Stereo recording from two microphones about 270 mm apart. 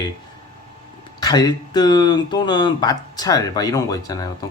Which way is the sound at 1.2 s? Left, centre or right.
Centre.